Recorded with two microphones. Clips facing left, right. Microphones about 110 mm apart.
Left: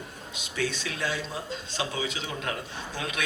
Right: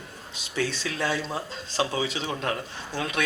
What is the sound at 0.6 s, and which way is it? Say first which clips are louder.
A man's voice: right 2 dB; 40° right (ahead or behind).